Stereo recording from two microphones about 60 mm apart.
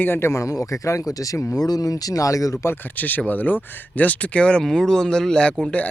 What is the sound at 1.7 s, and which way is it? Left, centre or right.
Speech, left.